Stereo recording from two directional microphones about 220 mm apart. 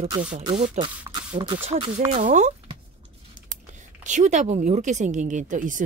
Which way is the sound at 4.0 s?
35° right (ahead or behind).